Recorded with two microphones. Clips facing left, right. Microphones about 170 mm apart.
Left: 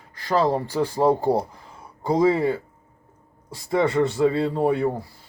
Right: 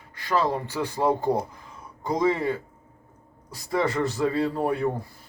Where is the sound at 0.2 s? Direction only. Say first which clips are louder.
Left 4 dB; 35° left (ahead or behind).